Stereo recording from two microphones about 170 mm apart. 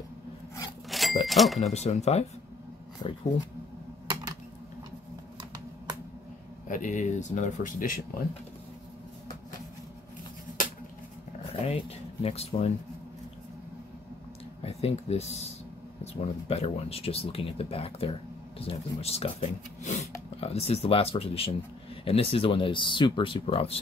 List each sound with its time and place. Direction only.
0.8 s a sound: centre (ahead or behind)
1.2 s speech: centre (ahead or behind)
1.7 s speech: 40° left (ahead or behind)
3.0 s speech: 25° left (ahead or behind)
5.4 s finger snapping: 25° right (ahead or behind)
6.7 s speech: 50° left (ahead or behind)
11.6 s speech: 35° left (ahead or behind)
14.6 s speech: 35° left (ahead or behind)